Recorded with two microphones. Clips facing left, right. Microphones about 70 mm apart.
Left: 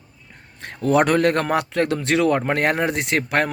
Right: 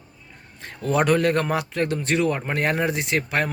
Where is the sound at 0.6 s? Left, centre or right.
Left.